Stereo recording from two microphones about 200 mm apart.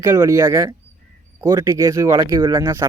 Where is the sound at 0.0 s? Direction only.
15° right (ahead or behind).